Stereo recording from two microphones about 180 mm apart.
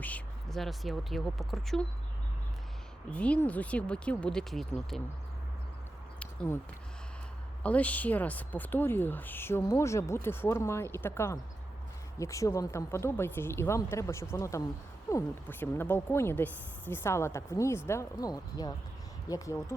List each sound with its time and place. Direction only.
0.0 s speech: 5° left (ahead or behind)
3.1 s speech: 5° left (ahead or behind)
6.1 s a sound: 15° left (ahead or behind)
7.6 s speech: 10° left (ahead or behind)